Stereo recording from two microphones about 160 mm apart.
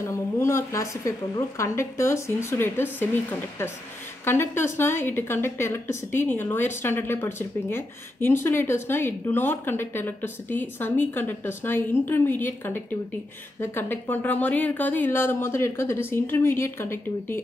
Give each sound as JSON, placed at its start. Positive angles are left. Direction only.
{"t": 0.0, "sound": "speech", "side_deg": 15}